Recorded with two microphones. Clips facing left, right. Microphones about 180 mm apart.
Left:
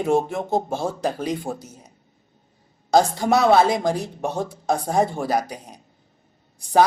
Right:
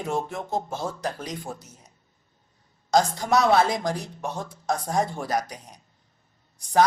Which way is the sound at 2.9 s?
30° left (ahead or behind).